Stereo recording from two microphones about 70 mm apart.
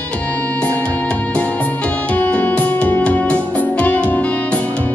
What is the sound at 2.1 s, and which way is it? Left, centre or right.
Music, left.